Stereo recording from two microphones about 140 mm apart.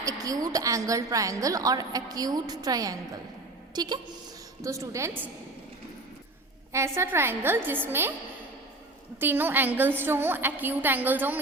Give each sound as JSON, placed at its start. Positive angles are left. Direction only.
{"t": 0.0, "sound": "a woman's voice", "side_deg": -25}
{"t": 6.7, "sound": "a woman's voice", "side_deg": -20}
{"t": 9.2, "sound": "a woman's voice", "side_deg": -15}